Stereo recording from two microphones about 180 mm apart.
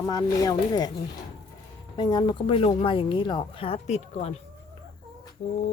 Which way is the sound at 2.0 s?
25° left (ahead or behind).